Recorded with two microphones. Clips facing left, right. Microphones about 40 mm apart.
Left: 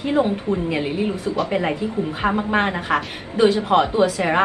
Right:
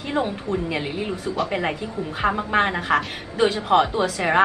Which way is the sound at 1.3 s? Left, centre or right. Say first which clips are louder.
Even; centre.